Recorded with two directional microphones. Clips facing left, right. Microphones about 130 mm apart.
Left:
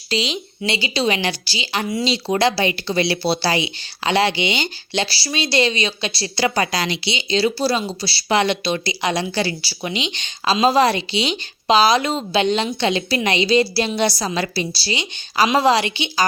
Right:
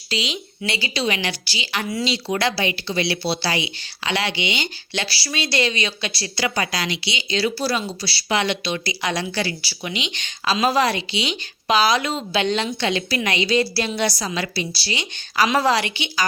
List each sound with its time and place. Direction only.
0.1 s speech: 30° left (ahead or behind)
8.4 s speech: 35° left (ahead or behind)
8.8 s a woman's voice: 25° left (ahead or behind)